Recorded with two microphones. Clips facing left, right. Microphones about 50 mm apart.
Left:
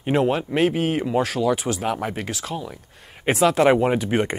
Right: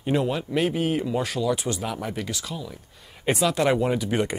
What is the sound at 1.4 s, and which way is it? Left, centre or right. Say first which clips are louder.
Speech: left 2 dB; centre.